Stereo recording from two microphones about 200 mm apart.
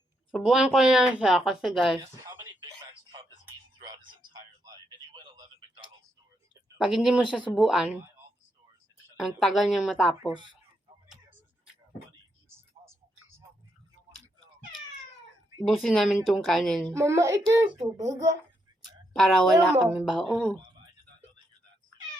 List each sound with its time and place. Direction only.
0.3 s speech: centre (ahead or behind)
2.0 s a sound: 20° right (ahead or behind)
4.3 s a sound: 20° right (ahead or behind)
6.8 s speech: 5° right (ahead or behind)
9.1 s speech: centre (ahead or behind)
15.6 s speech: centre (ahead or behind)
16.9 s a child's voice: 15° right (ahead or behind)
19.1 s speech: 5° left (ahead or behind)